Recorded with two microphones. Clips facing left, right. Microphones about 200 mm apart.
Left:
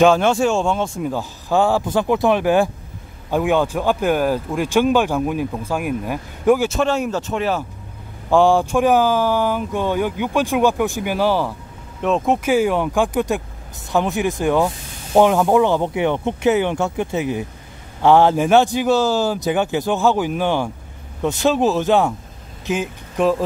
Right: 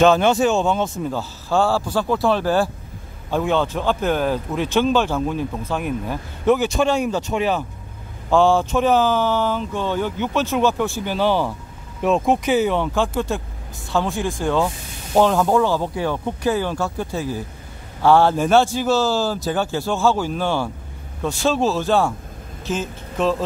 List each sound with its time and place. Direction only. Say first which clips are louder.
0.0 s speech: left 1 dB; 10° left (ahead or behind)
0.3 s speech: even; 5° right (ahead or behind)
0.9 s speech: left 2 dB; 10° left (ahead or behind)
8.3 s speech: left 2 dB; 15° left (ahead or behind)